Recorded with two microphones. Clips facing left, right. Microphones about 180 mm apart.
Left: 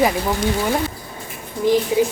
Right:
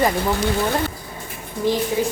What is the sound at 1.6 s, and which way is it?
Speech, 15° left (ahead or behind).